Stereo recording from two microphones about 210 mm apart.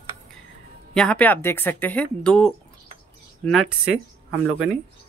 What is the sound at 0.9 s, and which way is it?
Speech, 5° left (ahead or behind).